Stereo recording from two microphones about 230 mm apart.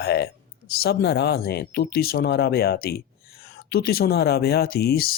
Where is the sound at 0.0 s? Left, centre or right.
Left.